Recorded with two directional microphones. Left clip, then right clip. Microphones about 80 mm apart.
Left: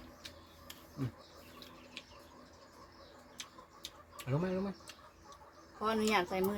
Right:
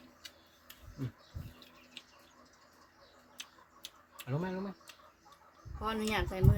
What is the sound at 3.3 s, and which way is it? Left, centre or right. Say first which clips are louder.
Tick-tock: even; right.